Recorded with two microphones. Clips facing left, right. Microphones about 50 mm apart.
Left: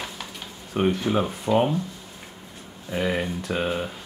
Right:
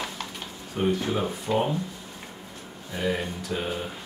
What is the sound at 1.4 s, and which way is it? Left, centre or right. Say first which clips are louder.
Speech: left 5 dB; left.